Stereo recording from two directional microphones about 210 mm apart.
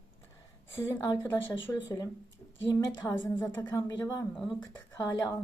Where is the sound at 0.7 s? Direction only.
10° left (ahead or behind).